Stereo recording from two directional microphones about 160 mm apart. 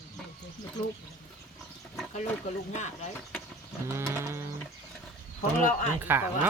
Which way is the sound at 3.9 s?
15° right (ahead or behind).